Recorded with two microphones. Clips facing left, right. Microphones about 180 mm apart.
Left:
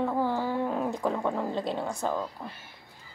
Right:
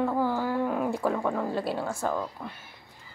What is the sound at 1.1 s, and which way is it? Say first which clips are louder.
Speech: right 1 dB; 5° left (ahead or behind).